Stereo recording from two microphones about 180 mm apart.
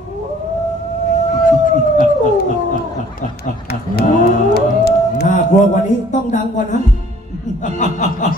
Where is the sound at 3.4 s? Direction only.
60° left (ahead or behind).